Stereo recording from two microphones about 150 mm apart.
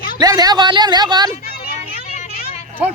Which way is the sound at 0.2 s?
25° right (ahead or behind).